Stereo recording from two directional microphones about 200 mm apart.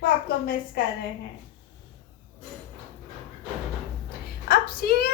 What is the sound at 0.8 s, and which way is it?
Speech, 50° left (ahead or behind).